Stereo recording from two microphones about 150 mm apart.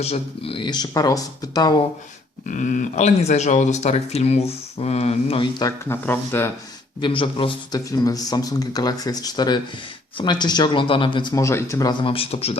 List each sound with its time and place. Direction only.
0.0 s speech: 40° left (ahead or behind)
2.5 s speech: 60° left (ahead or behind); by 5.6 s 35° left (ahead or behind)
5.6 s speech: 15° left (ahead or behind)
7.0 s a man's voice: 35° left (ahead or behind)
7.9 s speech: 25° left (ahead or behind)
12.0 s a man's voice: 40° left (ahead or behind)